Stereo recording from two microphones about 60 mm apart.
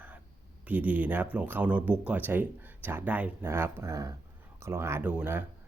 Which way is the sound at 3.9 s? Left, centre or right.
Right.